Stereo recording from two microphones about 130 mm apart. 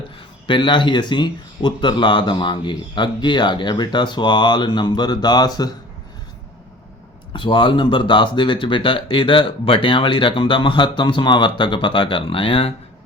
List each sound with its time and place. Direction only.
0.4 s speech: 35° left (ahead or behind)
7.3 s speech: 40° left (ahead or behind)